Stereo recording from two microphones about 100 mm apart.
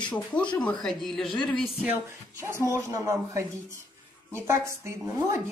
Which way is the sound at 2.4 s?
25° right (ahead or behind).